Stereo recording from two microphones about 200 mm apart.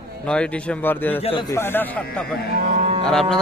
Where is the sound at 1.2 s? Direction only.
30° left (ahead or behind).